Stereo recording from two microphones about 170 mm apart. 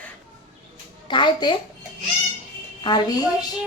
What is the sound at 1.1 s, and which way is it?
Speech, 25° left (ahead or behind).